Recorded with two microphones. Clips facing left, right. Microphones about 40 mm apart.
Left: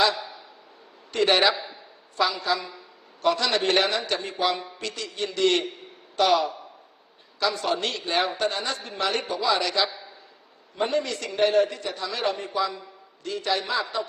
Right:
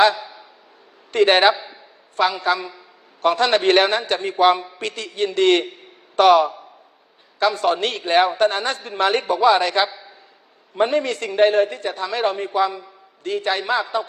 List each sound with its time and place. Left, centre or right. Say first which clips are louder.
0.0 s a man's voice: right 7 dB; right